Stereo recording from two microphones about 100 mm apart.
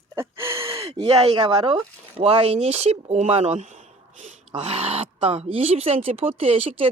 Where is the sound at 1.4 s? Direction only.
55° right (ahead or behind); by 6.1 s 85° right.